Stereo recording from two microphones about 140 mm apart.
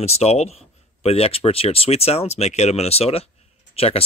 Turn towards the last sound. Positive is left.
turn(degrees=45)  # may be behind; listen again after turning